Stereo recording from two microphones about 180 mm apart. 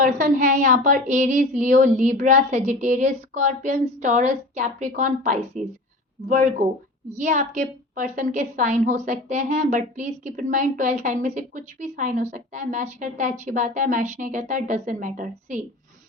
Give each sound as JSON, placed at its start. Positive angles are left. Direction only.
{"t": 0.0, "sound": "a woman's voice", "side_deg": -45}